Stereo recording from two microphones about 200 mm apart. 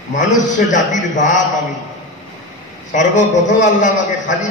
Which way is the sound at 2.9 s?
40° left (ahead or behind).